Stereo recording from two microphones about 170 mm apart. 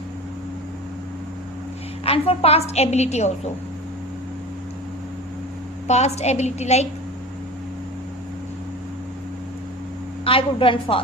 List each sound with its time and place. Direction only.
2.0 s a woman's voice: 35° left (ahead or behind)
5.9 s a woman's voice: 40° left (ahead or behind)
10.2 s a woman's voice: 30° left (ahead or behind)